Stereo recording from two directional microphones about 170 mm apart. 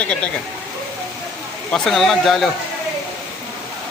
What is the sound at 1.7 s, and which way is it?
Speech, centre (ahead or behind).